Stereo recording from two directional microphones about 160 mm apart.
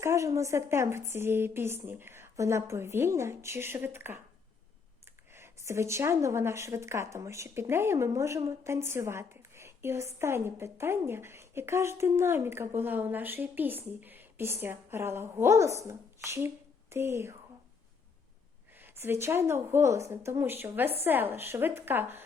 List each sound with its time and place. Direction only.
0.0 s speech: 20° right (ahead or behind)
5.3 s a woman's voice: 15° right (ahead or behind)
18.8 s speech: 15° right (ahead or behind)